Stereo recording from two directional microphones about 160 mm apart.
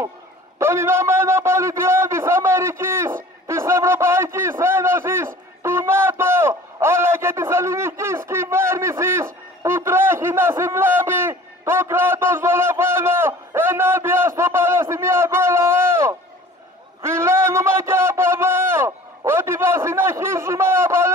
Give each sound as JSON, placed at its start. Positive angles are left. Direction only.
{"t": 0.6, "sound": "a man's voice", "side_deg": -15}